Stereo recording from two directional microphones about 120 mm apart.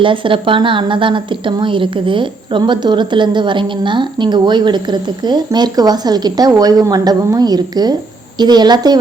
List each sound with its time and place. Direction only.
0.0 s a woman's voice: 45° right (ahead or behind)